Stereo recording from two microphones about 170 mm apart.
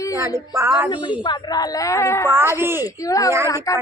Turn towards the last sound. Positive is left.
turn(degrees=20)  # may be behind; listen again after turning